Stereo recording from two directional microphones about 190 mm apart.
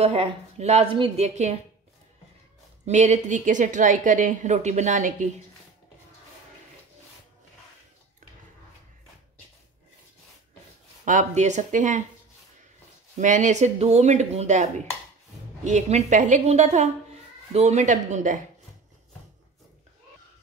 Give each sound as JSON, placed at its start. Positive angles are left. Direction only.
{"t": 0.0, "sound": "a woman's voice", "side_deg": -30}
{"t": 2.8, "sound": "a woman's voice", "side_deg": -35}
{"t": 11.1, "sound": "a woman's voice", "side_deg": -40}
{"t": 13.2, "sound": "a woman's voice", "side_deg": -40}